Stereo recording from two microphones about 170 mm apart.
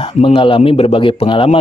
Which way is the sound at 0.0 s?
35° left (ahead or behind).